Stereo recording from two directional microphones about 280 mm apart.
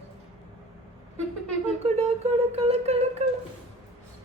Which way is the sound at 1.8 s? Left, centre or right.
Right.